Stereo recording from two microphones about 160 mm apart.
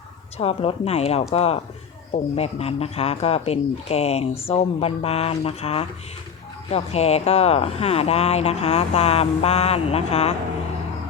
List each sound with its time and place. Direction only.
0.3 s speech: 40° left (ahead or behind)